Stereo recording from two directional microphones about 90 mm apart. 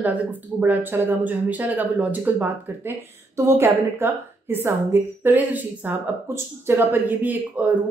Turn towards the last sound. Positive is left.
turn(degrees=-15)  # may be behind; listen again after turning